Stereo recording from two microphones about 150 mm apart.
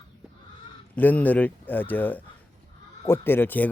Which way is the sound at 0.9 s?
10° left (ahead or behind).